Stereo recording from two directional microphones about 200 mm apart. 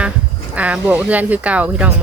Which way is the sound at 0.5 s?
5° right (ahead or behind).